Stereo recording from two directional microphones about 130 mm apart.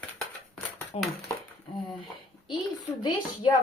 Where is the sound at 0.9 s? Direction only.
55° left (ahead or behind).